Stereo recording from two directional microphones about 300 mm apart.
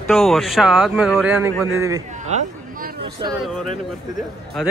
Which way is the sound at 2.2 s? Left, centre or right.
Right.